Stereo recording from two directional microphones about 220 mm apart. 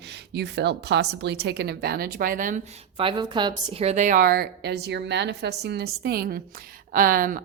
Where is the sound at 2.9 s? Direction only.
20° right (ahead or behind).